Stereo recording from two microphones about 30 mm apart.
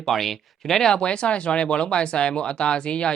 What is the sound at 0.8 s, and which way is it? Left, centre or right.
Speech, left.